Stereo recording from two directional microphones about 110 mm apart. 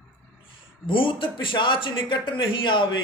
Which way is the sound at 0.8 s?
50° left (ahead or behind).